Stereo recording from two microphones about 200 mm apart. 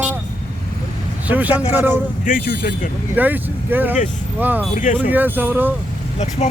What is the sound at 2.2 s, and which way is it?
Speech, 45° left (ahead or behind).